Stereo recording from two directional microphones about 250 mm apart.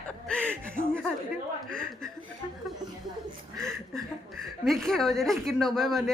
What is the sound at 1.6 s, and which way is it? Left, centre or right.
Chuckle, centre.